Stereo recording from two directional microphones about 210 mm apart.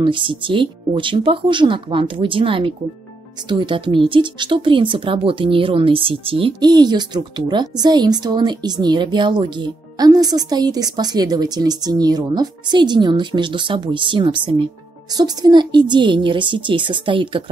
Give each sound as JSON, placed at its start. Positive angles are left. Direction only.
{"t": 0.0, "sound": "speech", "side_deg": -25}